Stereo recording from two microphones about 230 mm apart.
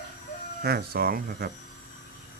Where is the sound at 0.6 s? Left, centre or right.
Right.